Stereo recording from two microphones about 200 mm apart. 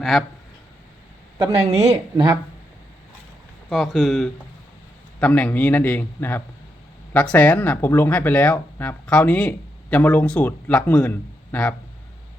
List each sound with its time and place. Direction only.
0.0 s speech: centre (ahead or behind)
1.4 s a woman's voice: 35° right (ahead or behind)
3.7 s speech: centre (ahead or behind)